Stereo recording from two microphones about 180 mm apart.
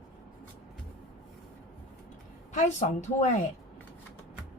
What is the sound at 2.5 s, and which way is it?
Speech, 40° left (ahead or behind).